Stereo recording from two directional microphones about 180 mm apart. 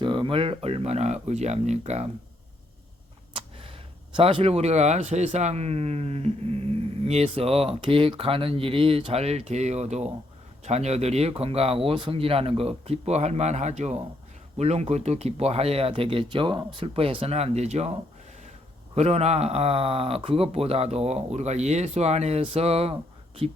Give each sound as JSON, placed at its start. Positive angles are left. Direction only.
{"t": 0.0, "sound": "speech", "side_deg": -25}
{"t": 3.3, "sound": "speech", "side_deg": -30}
{"t": 18.9, "sound": "speech", "side_deg": -35}